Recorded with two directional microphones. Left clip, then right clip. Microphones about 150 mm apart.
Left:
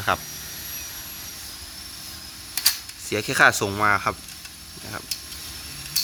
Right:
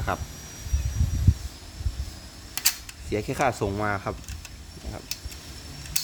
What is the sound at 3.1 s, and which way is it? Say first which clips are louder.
Speech: left 7 dB; centre (ahead or behind).